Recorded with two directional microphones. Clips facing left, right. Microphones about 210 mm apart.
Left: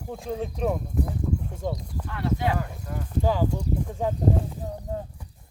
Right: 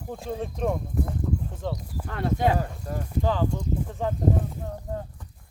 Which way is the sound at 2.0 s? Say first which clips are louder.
Right 3 dB; 50° right (ahead or behind).